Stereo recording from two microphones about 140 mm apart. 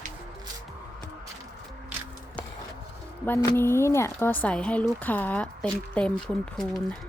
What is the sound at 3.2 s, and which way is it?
Speech, 15° left (ahead or behind).